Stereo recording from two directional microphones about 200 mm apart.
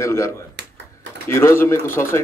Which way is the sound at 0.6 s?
55° right (ahead or behind).